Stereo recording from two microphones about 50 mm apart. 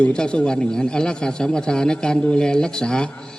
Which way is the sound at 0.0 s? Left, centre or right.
Centre.